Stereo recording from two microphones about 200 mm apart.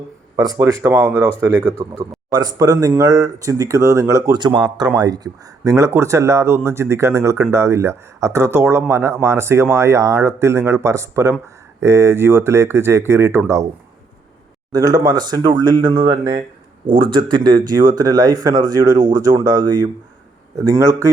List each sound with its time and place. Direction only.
0.3 s speech: 20° right (ahead or behind)
14.7 s speech: 20° right (ahead or behind)